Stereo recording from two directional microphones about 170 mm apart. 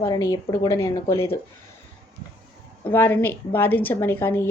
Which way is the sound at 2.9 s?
10° left (ahead or behind).